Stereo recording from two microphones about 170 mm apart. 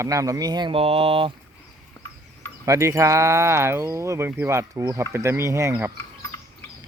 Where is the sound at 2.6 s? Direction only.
20° right (ahead or behind).